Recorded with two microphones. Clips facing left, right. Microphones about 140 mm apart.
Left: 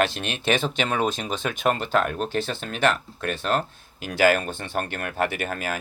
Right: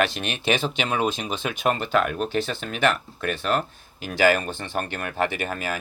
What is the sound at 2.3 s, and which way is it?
Speech, 50° right (ahead or behind).